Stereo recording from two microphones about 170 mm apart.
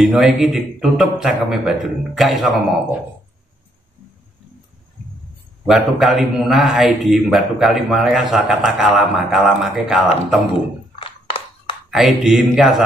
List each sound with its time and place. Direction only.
0.0 s a man's voice: centre (ahead or behind)
5.7 s a man's voice: centre (ahead or behind)
11.0 s a sound: 30° left (ahead or behind)
11.9 s a man's voice: centre (ahead or behind)